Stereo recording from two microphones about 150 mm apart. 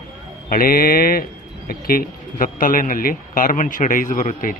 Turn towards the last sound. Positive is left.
turn(degrees=60)  # may be behind; listen again after turning